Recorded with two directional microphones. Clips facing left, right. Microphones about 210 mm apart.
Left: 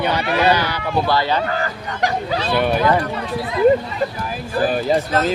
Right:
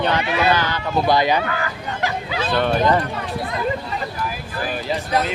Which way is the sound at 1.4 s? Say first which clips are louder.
Left 2 dB; 40° left (ahead or behind).